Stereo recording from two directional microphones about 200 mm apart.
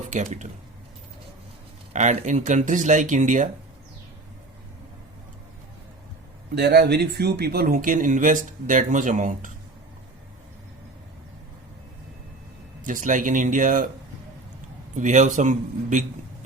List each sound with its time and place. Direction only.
0.0 s speech: 40° right (ahead or behind)
1.9 s speech: 35° right (ahead or behind)
6.5 s speech: 55° right (ahead or behind); by 9.5 s 40° right (ahead or behind)
12.8 s speech: 40° right (ahead or behind)
14.9 s speech: 40° right (ahead or behind)